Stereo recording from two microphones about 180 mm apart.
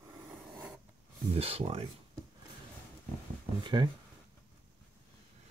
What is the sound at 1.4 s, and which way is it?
Speech, 35° right (ahead or behind).